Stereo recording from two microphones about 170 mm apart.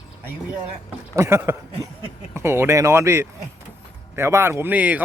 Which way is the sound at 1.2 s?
15° right (ahead or behind).